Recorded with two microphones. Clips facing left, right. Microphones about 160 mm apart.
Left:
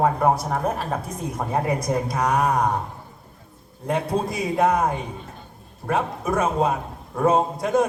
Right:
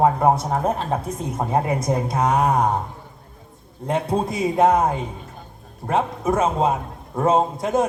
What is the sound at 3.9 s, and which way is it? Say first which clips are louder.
Speech: right 1 dB; 25° right (ahead or behind).